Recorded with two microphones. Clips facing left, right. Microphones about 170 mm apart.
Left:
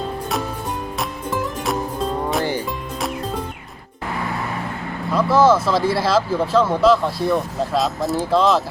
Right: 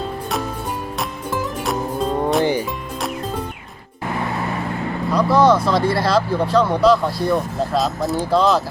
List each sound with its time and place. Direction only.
1.3 s music: centre (ahead or behind)
2.4 s music: 15° right (ahead or behind)
5.1 s speech: 5° left (ahead or behind)